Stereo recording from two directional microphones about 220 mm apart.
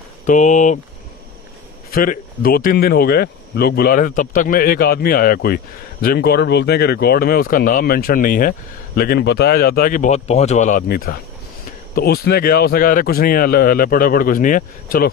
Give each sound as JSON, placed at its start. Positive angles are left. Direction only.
{"t": 0.3, "sound": "a man's voice", "side_deg": 35}
{"t": 1.9, "sound": "a man's voice", "side_deg": 40}